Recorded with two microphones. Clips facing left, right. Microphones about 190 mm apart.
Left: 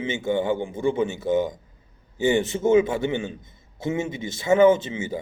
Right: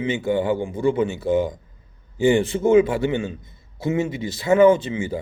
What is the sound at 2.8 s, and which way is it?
A man's voice, 20° left (ahead or behind).